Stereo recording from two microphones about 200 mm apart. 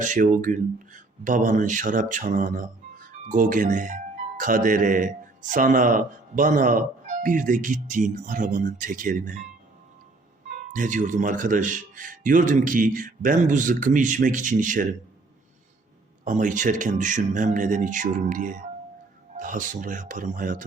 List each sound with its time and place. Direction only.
0.0 s a man's voice: 40° right (ahead or behind)
10.7 s a man's voice: 40° right (ahead or behind)
16.2 s a man's voice: 40° right (ahead or behind)